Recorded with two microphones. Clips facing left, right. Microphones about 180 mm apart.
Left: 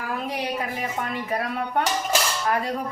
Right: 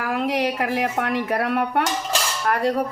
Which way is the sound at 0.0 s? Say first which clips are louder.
Right 6 dB; 80° right.